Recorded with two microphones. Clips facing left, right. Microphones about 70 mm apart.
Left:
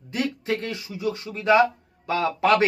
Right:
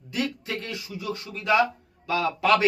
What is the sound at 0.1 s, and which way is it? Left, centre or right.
Speech, left.